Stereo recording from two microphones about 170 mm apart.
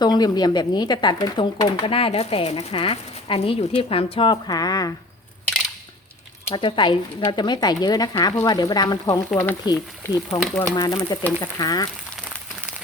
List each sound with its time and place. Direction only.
0.0 s speech: 25° left (ahead or behind)
6.5 s speech: 30° left (ahead or behind)
9.3 s speech: 10° left (ahead or behind)
9.6 s speech: 25° left (ahead or behind)